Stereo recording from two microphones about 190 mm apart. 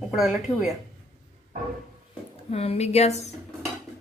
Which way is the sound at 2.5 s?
35° left (ahead or behind).